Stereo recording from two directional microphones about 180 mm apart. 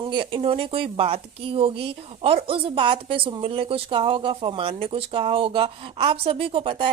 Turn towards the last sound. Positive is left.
turn(degrees=-30)  # may be behind; listen again after turning